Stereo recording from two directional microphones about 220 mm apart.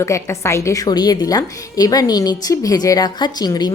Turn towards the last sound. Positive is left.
turn(degrees=20)  # may be behind; listen again after turning